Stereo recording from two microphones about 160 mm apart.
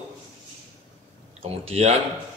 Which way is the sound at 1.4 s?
40° right (ahead or behind).